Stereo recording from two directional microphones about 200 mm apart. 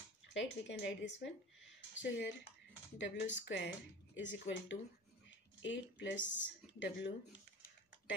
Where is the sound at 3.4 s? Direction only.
60° left (ahead or behind).